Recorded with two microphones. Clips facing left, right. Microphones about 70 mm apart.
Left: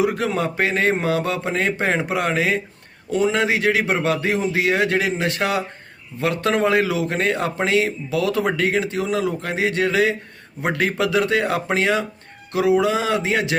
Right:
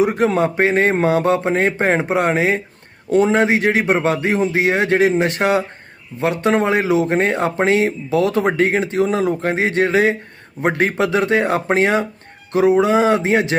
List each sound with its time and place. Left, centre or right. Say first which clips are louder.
0.0 s a man's voice: right 5 dB; right